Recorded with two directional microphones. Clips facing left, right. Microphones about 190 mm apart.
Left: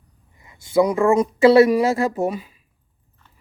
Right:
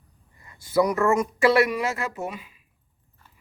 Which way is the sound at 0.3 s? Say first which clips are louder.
Left 4 dB; 20° left (ahead or behind).